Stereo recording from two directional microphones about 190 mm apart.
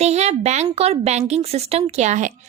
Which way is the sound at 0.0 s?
35° right (ahead or behind).